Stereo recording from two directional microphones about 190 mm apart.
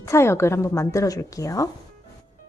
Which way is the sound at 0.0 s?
15° left (ahead or behind).